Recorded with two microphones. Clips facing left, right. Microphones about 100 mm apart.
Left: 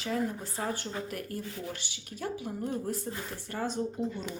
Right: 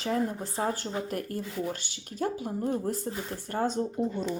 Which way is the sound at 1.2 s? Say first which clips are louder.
Right 5 dB; 40° right (ahead or behind).